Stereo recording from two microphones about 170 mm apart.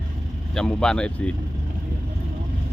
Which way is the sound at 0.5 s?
5° left (ahead or behind).